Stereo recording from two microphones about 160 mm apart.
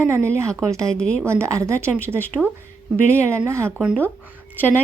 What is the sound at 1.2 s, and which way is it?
A woman's voice, 15° right (ahead or behind).